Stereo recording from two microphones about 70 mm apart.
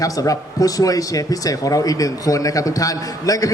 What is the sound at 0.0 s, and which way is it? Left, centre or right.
A man's voice, left.